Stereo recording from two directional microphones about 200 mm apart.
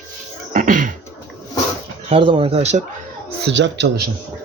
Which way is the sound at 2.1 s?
25° right (ahead or behind).